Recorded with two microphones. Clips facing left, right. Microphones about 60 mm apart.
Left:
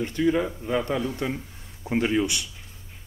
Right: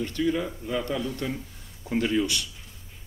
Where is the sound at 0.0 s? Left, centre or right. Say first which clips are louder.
Left 3 dB; left.